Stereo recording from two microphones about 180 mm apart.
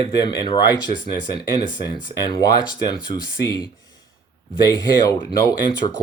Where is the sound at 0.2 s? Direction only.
25° left (ahead or behind).